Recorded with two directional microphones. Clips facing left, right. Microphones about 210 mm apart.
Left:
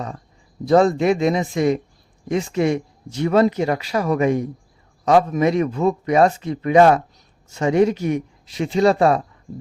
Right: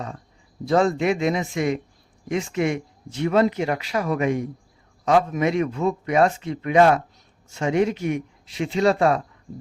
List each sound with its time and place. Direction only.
0.6 s speech: 40° left (ahead or behind)